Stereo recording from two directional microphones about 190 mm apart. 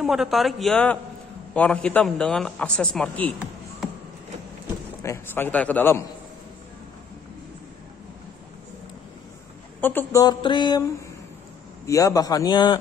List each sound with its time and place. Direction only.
0.0 s a man's voice: centre (ahead or behind)
5.0 s a man's voice: 10° left (ahead or behind)
9.8 s a man's voice: 10° left (ahead or behind)
10.2 s a man's voice: 25° left (ahead or behind)